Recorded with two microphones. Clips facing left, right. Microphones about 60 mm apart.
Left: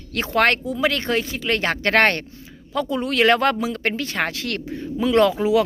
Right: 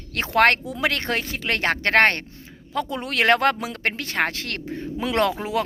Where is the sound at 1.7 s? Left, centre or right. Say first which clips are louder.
Even; right.